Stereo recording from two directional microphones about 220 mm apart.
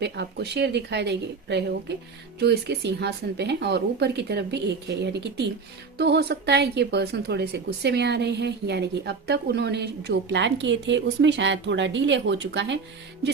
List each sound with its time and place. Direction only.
0.0 s a woman's voice: 50° right (ahead or behind)